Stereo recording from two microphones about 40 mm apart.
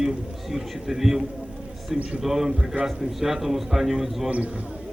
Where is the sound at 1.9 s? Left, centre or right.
Right.